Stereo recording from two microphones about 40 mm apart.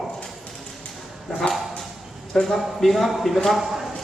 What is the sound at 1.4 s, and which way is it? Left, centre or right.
Dog, left.